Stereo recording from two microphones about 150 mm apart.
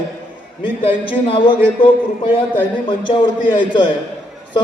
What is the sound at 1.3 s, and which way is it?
Speech, 35° left (ahead or behind).